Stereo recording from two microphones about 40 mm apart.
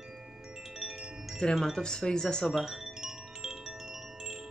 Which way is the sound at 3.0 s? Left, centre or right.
Centre.